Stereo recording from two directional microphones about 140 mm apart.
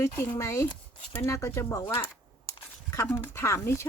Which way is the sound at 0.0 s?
20° left (ahead or behind).